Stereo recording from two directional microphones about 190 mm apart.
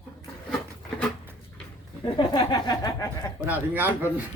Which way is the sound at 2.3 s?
20° left (ahead or behind).